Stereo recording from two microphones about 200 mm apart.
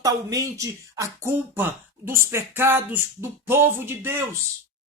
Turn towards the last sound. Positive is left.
turn(degrees=-10)  # may be behind; listen again after turning